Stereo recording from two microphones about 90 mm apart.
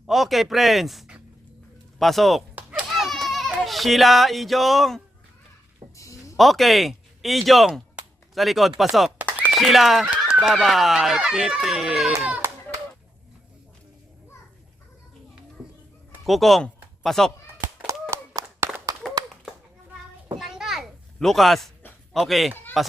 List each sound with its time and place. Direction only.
0.1 s speech: centre (ahead or behind)
2.6 s children playing: 15° right (ahead or behind)
2.9 s goat: centre (ahead or behind)
6.0 s a sound: 35° left (ahead or behind)
6.3 s speech: centre (ahead or behind)
16.2 s speech: centre (ahead or behind)
18.1 s a sound: 30° right (ahead or behind)
20.4 s children playing: 5° right (ahead or behind)
22.1 s speech: centre (ahead or behind)